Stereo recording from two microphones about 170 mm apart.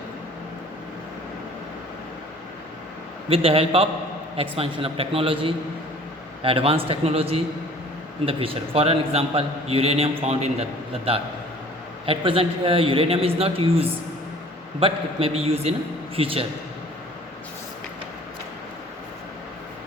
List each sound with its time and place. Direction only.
3.2 s a man's voice: 35° right (ahead or behind)